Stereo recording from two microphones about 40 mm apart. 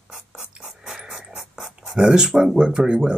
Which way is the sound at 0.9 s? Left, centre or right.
Centre.